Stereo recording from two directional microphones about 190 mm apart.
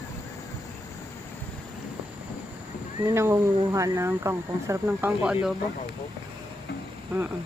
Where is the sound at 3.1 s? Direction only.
15° right (ahead or behind).